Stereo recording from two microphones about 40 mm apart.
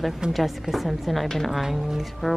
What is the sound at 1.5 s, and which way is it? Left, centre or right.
Speech, centre.